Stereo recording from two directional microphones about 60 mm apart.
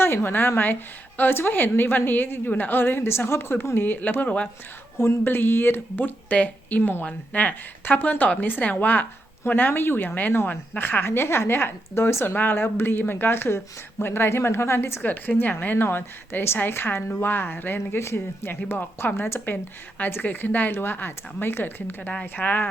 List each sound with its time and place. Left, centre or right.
0.0 s a woman's voice: left
5.2 s a woman's voice: left
15.6 s a woman's voice: left
17.7 s a woman's voice: left